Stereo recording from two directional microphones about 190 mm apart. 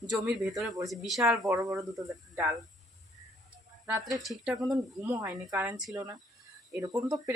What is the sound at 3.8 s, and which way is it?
Speech, centre (ahead or behind).